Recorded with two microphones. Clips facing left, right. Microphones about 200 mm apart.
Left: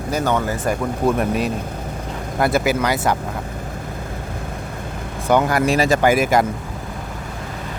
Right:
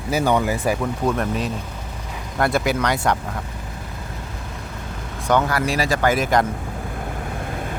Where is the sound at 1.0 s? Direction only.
10° left (ahead or behind).